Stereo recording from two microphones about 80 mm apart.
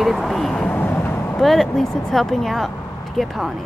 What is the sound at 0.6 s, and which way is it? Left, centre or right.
Vehicle, left.